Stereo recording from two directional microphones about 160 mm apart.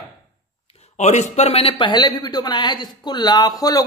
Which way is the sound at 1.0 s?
45° left (ahead or behind).